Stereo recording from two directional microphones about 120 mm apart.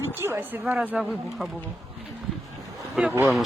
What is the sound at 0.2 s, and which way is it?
Speech, 20° right (ahead or behind).